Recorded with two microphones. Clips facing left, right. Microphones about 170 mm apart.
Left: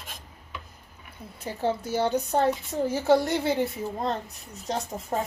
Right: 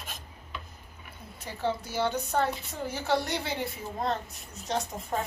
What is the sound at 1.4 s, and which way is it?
A woman's voice, 35° left (ahead or behind).